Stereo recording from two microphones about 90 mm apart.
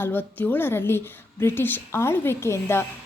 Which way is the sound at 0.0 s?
20° left (ahead or behind).